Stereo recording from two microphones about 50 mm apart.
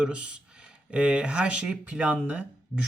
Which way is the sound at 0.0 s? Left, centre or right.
Right.